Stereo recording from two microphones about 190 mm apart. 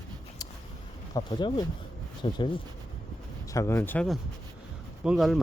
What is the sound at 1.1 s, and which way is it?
Speech, 25° left (ahead or behind).